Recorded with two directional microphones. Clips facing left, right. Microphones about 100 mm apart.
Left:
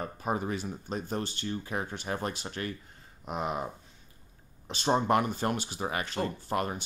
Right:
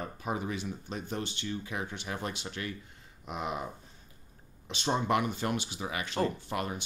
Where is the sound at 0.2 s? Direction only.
40° left (ahead or behind).